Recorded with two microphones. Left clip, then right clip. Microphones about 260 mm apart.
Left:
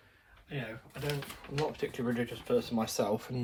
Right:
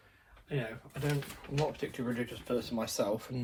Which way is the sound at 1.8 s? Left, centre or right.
Left.